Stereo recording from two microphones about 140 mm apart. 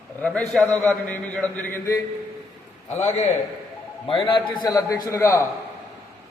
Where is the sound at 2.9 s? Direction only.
55° left (ahead or behind).